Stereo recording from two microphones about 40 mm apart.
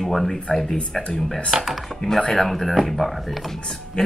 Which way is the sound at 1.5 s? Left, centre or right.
Centre.